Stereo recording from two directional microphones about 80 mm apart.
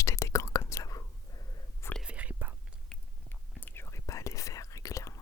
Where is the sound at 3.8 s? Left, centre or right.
Left.